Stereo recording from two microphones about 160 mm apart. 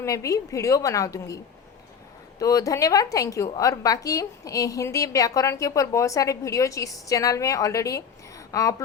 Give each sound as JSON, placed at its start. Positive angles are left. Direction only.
{"t": 0.0, "sound": "a woman's voice", "side_deg": 20}
{"t": 2.4, "sound": "a woman's voice", "side_deg": 20}